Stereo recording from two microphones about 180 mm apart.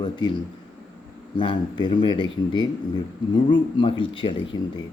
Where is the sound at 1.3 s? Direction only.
25° left (ahead or behind).